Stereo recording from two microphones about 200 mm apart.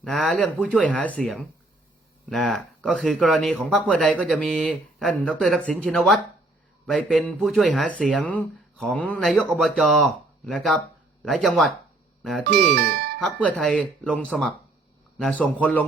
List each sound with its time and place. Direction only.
0.0 s speech: centre (ahead or behind)
12.7 s speech: 55° right (ahead or behind)
13.2 s speech: 5° left (ahead or behind)